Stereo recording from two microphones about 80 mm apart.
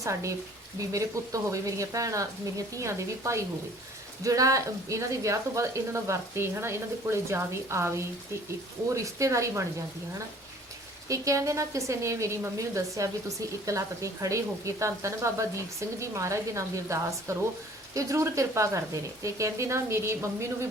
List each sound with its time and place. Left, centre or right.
0.0 s a woman's voice: right
9.0 s a woman's voice: right
11.1 s a woman's voice: right